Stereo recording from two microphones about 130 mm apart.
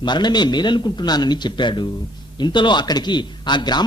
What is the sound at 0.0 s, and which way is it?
A man's voice, 35° left (ahead or behind).